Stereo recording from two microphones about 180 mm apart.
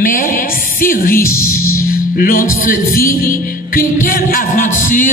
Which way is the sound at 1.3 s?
15° left (ahead or behind).